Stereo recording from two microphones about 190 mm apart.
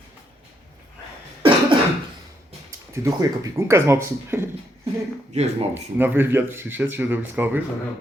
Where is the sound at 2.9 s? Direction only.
15° right (ahead or behind).